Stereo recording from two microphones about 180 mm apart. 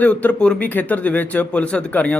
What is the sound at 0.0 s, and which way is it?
Speech, 10° left (ahead or behind).